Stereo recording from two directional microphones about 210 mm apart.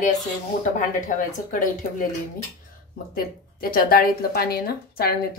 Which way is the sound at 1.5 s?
40° left (ahead or behind).